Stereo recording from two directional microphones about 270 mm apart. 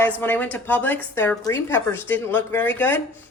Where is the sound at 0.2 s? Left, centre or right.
Centre.